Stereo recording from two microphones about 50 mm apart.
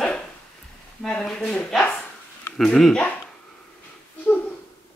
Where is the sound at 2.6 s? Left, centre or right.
Centre.